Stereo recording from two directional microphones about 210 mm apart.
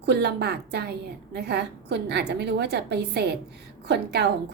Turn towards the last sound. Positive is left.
turn(degrees=-55)  # may be behind; listen again after turning